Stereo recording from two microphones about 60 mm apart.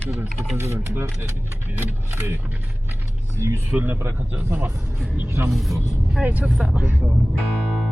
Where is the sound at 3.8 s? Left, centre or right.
Right.